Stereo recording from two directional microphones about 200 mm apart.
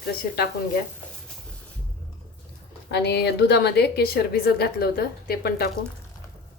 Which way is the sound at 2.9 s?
55° left (ahead or behind).